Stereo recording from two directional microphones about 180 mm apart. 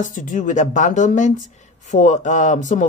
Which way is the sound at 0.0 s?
45° left (ahead or behind).